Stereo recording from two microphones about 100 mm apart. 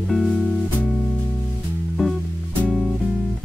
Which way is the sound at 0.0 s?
Centre (ahead or behind).